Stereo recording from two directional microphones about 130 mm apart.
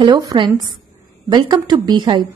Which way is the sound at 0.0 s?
35° right (ahead or behind).